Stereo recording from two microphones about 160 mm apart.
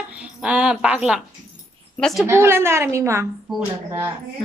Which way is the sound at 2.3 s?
15° right (ahead or behind).